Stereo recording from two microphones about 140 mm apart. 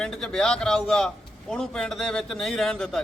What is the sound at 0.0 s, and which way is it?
A man's voice, 5° left (ahead or behind).